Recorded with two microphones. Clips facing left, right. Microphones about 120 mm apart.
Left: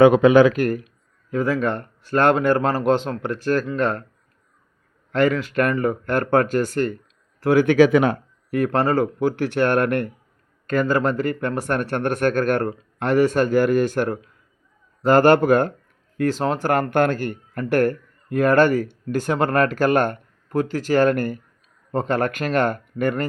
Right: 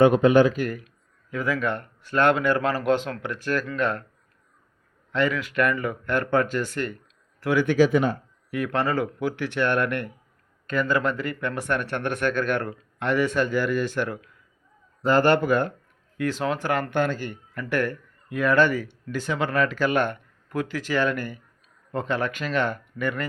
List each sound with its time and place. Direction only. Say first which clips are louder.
0.0 s speech: left 4 dB; 90° left
1.3 s speech: left 5 dB; 35° left (ahead or behind)
5.1 s speech: left 5 dB; 40° left (ahead or behind)
7.5 s speech: left 5 dB; 55° left (ahead or behind)
8.5 s speech: left 5 dB; 40° left (ahead or behind)